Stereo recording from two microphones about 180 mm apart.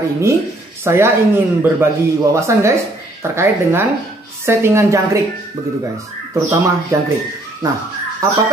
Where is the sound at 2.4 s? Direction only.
15° right (ahead or behind).